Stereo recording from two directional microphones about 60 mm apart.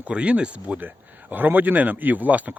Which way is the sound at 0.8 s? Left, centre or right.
Right.